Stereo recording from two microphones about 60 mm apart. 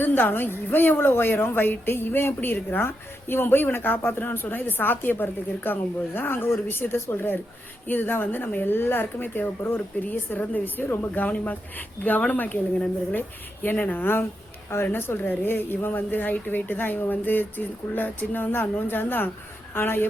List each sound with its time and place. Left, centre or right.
0.0 s speech: left